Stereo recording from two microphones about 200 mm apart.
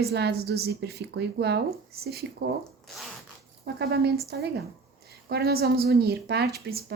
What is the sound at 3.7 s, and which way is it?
A woman's voice, 55° right (ahead or behind).